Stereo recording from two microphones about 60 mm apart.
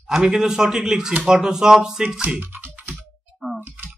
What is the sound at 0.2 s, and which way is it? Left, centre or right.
A man's voice, centre.